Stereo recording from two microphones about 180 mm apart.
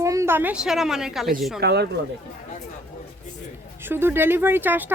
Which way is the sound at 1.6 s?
65° right (ahead or behind).